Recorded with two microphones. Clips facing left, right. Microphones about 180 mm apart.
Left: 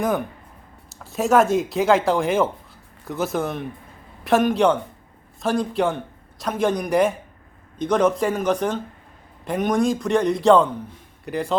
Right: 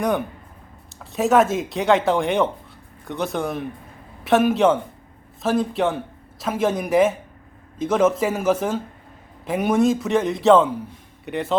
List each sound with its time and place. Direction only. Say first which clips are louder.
0.0 s speech: right 1 dB; centre (ahead or behind)